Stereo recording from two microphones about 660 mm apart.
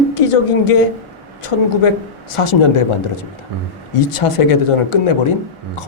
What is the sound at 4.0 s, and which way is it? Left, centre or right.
A man's voice, left.